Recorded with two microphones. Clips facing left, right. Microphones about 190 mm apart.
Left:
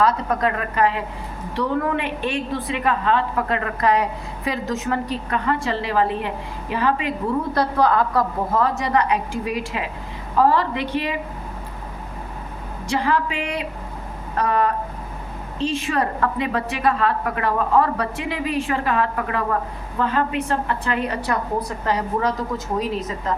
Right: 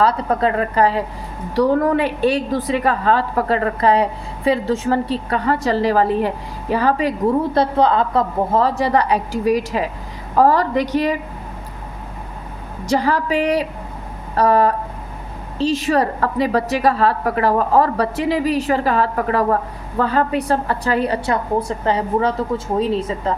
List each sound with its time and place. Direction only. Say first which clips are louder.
0.0 s a woman's voice: right 3 dB; 30° right (ahead or behind)
7.5 s a woman's voice: right 3 dB; 25° right (ahead or behind); by 11.2 s 40° right (ahead or behind)
12.9 s a woman's voice: right 4 dB; 40° right (ahead or behind)